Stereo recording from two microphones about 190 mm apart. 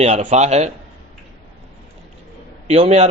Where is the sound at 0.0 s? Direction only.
35° right (ahead or behind).